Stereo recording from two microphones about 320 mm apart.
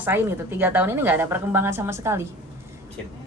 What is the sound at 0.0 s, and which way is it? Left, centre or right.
A woman's voice, centre.